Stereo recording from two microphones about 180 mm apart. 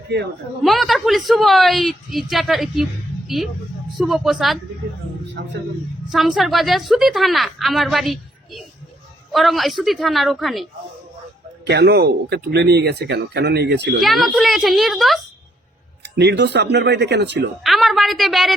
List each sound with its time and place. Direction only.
0.6 s a woman's voice: centre (ahead or behind)
6.1 s a woman's voice: centre (ahead or behind)
11.6 s speech: 65° right (ahead or behind)
14.0 s a woman's voice: centre (ahead or behind)
16.0 s speech: 70° right (ahead or behind)
17.6 s a sound: centre (ahead or behind)